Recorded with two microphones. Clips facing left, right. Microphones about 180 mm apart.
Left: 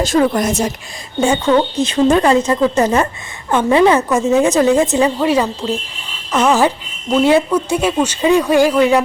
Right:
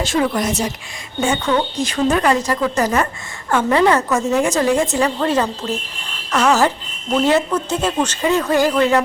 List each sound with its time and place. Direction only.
0.0 s speech: 40° left (ahead or behind)
1.2 s a woman's voice: 25° left (ahead or behind)